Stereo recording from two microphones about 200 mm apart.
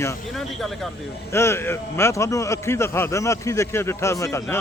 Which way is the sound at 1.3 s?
15° left (ahead or behind).